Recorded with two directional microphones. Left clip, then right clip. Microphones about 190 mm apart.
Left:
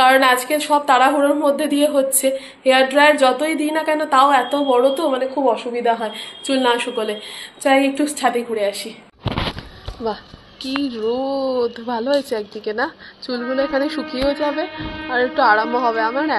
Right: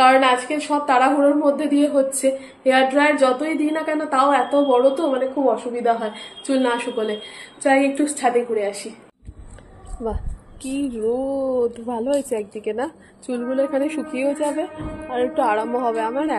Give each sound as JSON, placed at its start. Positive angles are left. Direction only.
{"t": 0.0, "sound": "a woman's voice", "side_deg": 0}
{"t": 10.6, "sound": "a woman's voice", "side_deg": 0}
{"t": 15.0, "sound": "a woman's voice", "side_deg": 0}
{"t": 15.9, "sound": "a woman's voice", "side_deg": -10}